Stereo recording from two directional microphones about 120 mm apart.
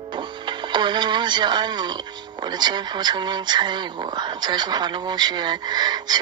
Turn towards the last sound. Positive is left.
turn(degrees=-35)  # may be behind; listen again after turning